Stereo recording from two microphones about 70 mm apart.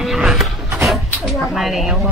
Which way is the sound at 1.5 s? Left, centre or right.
Centre.